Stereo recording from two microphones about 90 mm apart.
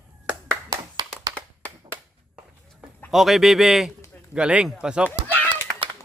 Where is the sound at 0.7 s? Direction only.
50° right (ahead or behind).